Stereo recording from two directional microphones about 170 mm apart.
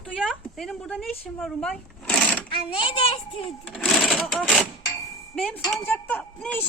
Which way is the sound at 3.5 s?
Centre (ahead or behind).